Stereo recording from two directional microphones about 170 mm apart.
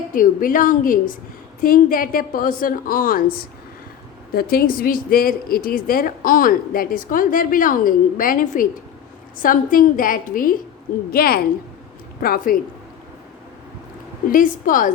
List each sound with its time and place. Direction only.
0.1 s a woman's voice: 55° left (ahead or behind)
4.4 s a woman's voice: 60° left (ahead or behind)
14.3 s a woman's voice: 55° left (ahead or behind)